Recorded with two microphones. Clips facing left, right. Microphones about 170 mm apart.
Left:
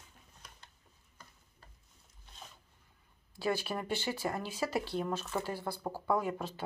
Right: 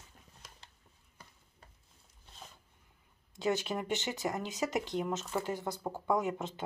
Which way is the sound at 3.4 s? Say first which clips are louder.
Right 1 dB; 20° right (ahead or behind).